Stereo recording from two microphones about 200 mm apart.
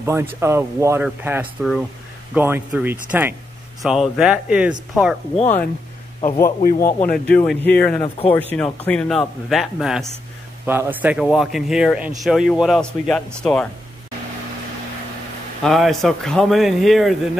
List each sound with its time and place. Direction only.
0.0 s a man's voice: 10° right (ahead or behind)
6.8 s speech: 15° left (ahead or behind)
8.0 s speech: 25° left (ahead or behind)
8.4 s a man's voice: 10° left (ahead or behind)
15.6 s a man's voice: centre (ahead or behind)